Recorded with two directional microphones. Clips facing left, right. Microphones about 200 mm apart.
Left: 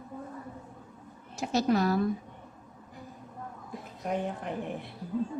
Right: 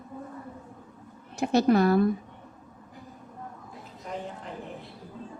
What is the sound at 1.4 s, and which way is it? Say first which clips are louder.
Speech: right 5 dB; 60° right (ahead or behind).